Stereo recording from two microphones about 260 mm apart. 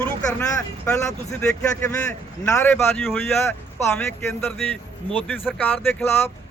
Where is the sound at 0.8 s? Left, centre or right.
Centre.